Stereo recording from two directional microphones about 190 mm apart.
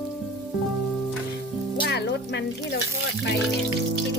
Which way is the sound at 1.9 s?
60° left (ahead or behind).